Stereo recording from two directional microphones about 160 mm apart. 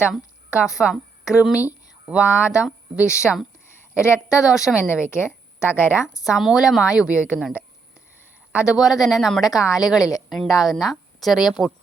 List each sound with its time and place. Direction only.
0.1 s a woman's voice: 5° right (ahead or behind)
4.8 s a woman's voice: 15° left (ahead or behind)
6.2 s speech: centre (ahead or behind)
10.0 s speech: 20° left (ahead or behind)
10.2 s a woman's voice: centre (ahead or behind)